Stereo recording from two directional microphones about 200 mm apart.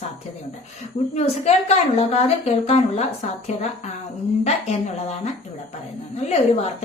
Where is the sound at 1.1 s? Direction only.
30° left (ahead or behind).